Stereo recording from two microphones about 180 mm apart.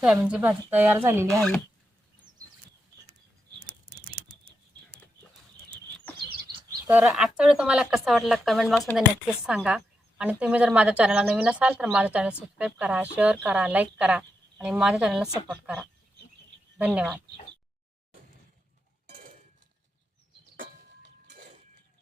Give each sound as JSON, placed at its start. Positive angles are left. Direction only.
{"t": 0.2, "sound": "a woman's voice", "side_deg": -10}
{"t": 1.4, "sound": "speech", "side_deg": 0}
{"t": 3.6, "sound": "a sound", "side_deg": -55}
{"t": 6.8, "sound": "a woman's voice", "side_deg": -10}
{"t": 21.2, "sound": "chink", "side_deg": -45}